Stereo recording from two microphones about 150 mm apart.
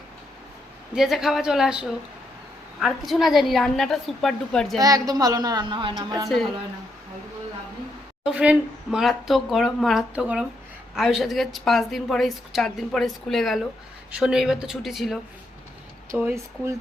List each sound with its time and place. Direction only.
0.9 s a woman's voice: centre (ahead or behind)
4.8 s a woman's voice: 25° right (ahead or behind)
6.2 s a woman's voice: centre (ahead or behind)
8.2 s a woman's voice: 5° right (ahead or behind)
16.1 s speech: 15° right (ahead or behind)